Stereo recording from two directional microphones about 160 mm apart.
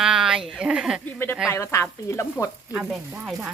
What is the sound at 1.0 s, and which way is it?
Speech, 15° left (ahead or behind).